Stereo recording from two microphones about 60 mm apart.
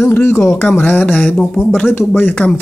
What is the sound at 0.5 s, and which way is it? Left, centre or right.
Speech, left.